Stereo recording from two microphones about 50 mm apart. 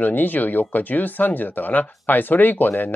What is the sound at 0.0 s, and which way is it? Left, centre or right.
Speech, left.